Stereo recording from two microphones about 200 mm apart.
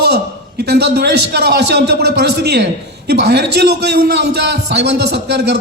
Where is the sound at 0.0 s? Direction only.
55° right (ahead or behind).